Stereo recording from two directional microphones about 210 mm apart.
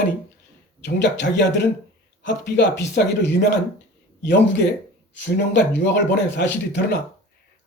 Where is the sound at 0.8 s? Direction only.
55° left (ahead or behind).